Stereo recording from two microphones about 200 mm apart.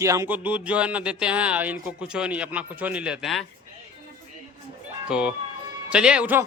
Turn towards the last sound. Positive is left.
turn(degrees=-5)  # may be behind; listen again after turning